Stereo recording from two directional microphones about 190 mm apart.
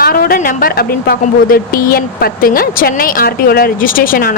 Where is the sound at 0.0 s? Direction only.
50° left (ahead or behind).